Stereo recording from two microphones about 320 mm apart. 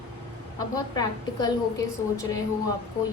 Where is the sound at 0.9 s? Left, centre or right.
Centre.